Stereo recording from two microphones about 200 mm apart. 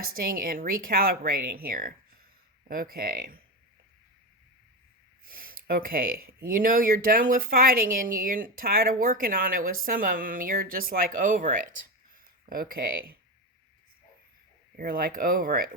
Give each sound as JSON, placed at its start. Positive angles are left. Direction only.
{"t": 0.0, "sound": "speech", "side_deg": -45}
{"t": 5.3, "sound": "speech", "side_deg": -45}
{"t": 14.8, "sound": "speech", "side_deg": -45}